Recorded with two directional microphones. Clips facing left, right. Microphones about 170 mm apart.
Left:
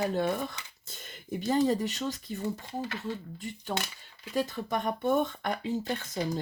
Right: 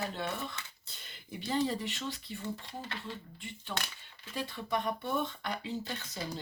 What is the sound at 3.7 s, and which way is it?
Speech, 45° left (ahead or behind).